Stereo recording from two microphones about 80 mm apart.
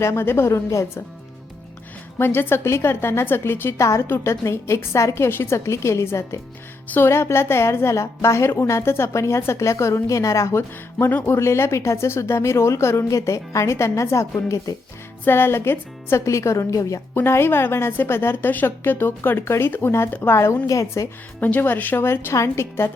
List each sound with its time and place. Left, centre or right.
0.0 s a woman's voice: left
2.1 s a woman's voice: left
10.9 s a woman's voice: left
15.2 s a woman's voice: left
17.2 s a woman's voice: left
21.4 s a woman's voice: left